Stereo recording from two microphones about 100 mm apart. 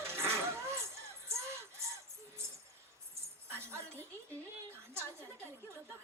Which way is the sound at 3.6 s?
25° right (ahead or behind).